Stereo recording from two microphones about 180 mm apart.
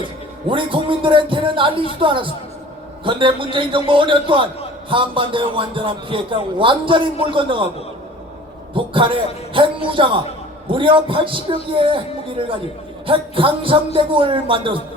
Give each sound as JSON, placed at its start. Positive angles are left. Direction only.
{"t": 0.4, "sound": "a man's voice", "side_deg": -30}
{"t": 8.7, "sound": "a man's voice", "side_deg": -30}